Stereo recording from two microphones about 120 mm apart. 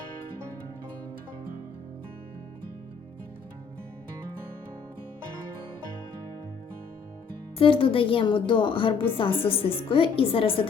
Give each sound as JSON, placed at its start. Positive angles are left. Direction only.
{"t": 7.6, "sound": "a woman's voice", "side_deg": 50}